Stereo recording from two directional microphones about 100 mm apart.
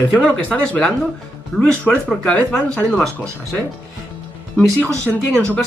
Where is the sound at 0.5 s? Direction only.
10° left (ahead or behind).